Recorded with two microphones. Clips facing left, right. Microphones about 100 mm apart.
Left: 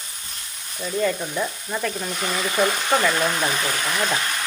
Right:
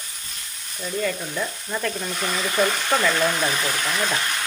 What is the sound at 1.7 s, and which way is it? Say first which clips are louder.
Speech: right 1 dB; 5° left (ahead or behind).